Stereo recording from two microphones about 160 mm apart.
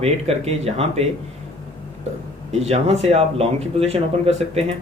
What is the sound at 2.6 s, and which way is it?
Speech, 40° right (ahead or behind).